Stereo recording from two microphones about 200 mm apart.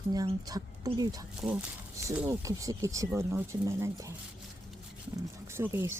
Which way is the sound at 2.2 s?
15° right (ahead or behind).